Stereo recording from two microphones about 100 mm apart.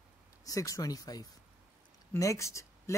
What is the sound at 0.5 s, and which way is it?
Speech, 35° left (ahead or behind).